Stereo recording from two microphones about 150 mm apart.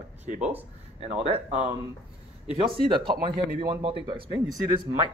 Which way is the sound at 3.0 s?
35° right (ahead or behind).